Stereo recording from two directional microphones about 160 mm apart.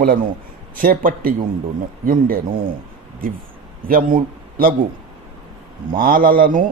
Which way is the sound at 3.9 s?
60° right (ahead or behind).